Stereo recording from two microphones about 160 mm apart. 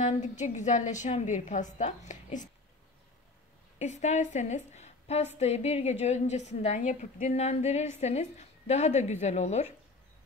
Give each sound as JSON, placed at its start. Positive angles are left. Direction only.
{"t": 0.0, "sound": "a woman's voice", "side_deg": 50}
{"t": 3.8, "sound": "a woman's voice", "side_deg": 50}